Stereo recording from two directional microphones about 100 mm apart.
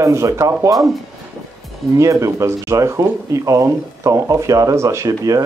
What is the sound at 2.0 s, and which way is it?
Speech, 30° right (ahead or behind).